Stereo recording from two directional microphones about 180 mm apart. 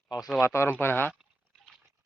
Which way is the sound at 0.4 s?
15° left (ahead or behind).